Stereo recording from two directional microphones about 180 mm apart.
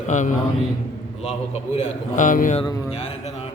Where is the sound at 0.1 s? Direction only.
45° left (ahead or behind).